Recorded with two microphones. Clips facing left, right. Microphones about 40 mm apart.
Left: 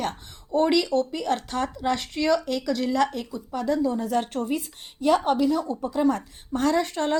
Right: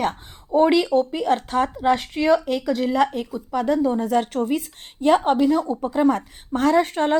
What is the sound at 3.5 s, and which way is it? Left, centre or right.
Speech, right.